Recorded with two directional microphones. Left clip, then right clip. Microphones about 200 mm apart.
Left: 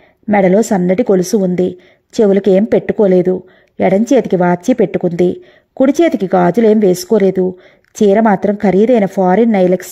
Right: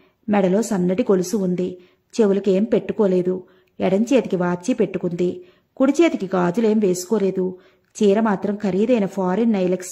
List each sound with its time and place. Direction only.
0.3 s a woman's voice: 25° left (ahead or behind)